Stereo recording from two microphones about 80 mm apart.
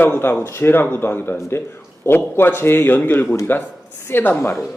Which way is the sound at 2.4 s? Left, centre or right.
Left.